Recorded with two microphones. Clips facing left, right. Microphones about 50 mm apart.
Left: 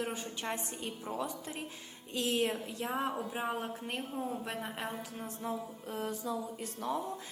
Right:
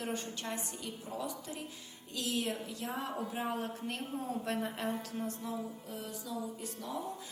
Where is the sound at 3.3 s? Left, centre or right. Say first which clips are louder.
Left 1 dB; centre.